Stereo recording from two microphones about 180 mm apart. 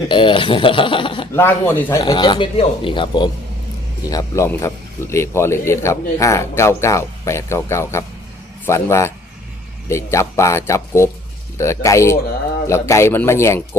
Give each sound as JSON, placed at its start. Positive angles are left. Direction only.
{"t": 0.1, "sound": "speech", "side_deg": 30}
{"t": 1.3, "sound": "a man's voice", "side_deg": 10}